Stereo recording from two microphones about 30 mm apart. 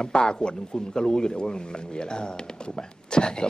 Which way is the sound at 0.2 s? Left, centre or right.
Left.